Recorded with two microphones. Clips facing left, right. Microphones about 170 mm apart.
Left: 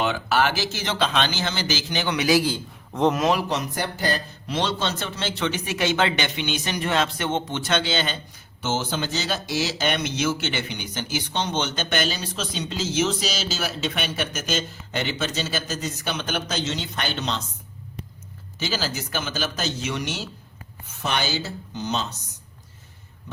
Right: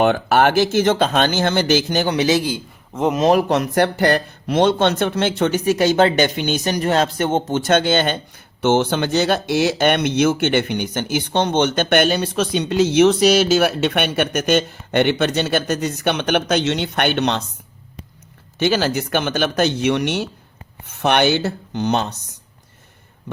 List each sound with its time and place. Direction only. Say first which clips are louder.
0.0 s speech: right 7 dB; 55° right (ahead or behind)
2.1 s a man's voice: even; 25° right (ahead or behind)
2.9 s speech: right 1 dB; centre (ahead or behind)
3.2 s speech: right 7 dB; 50° right (ahead or behind)
18.6 s speech: right 10 dB; 65° right (ahead or behind)